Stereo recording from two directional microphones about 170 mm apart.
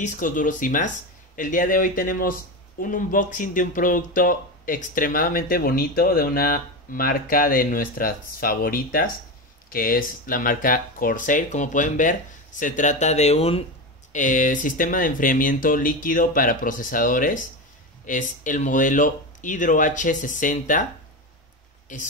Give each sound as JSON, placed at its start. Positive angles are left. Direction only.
{"t": 0.0, "sound": "speech", "side_deg": 50}
{"t": 14.1, "sound": "speech", "side_deg": 50}
{"t": 21.9, "sound": "speech", "side_deg": 50}